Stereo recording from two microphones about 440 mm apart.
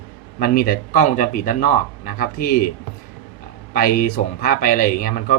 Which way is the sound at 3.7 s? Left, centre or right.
Centre.